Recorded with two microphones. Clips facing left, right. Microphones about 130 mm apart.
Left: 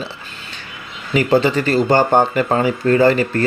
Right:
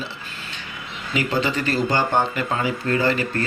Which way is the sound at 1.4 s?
35° left (ahead or behind).